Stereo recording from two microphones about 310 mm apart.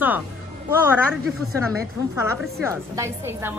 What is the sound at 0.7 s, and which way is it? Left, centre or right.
Speech, centre.